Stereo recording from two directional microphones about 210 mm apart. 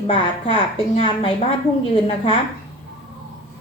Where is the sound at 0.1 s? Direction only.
25° left (ahead or behind).